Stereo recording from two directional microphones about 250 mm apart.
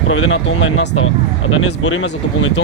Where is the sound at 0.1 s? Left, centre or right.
Left.